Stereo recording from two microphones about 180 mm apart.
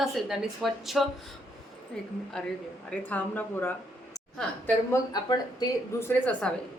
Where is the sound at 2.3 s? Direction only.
5° left (ahead or behind).